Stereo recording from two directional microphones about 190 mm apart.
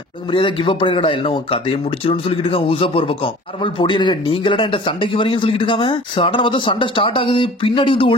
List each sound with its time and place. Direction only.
0.3 s speech: 25° left (ahead or behind)